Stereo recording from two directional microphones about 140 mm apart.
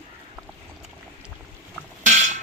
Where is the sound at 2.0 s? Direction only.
60° right (ahead or behind).